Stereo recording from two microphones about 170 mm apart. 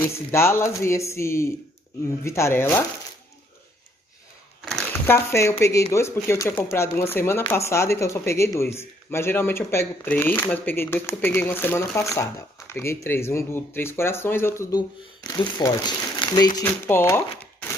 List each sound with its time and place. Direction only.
0.0 s speech: 15° left (ahead or behind)
4.6 s a sound: centre (ahead or behind)
5.0 s speech: 15° left (ahead or behind)